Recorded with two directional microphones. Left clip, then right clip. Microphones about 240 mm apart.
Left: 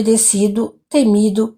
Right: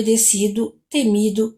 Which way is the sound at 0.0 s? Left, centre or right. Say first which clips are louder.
Left 3 dB; left.